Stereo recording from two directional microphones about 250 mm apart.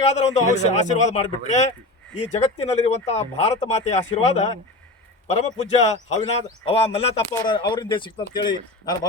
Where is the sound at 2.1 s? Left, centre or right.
Left.